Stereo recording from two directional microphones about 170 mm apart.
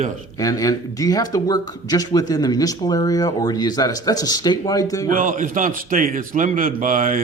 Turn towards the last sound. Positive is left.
turn(degrees=-50)  # may be behind; listen again after turning